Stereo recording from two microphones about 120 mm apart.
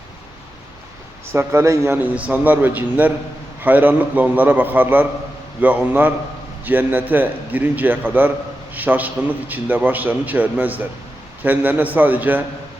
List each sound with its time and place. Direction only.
1.3 s speech: 20° right (ahead or behind)
2.0 s a man's voice: 10° right (ahead or behind)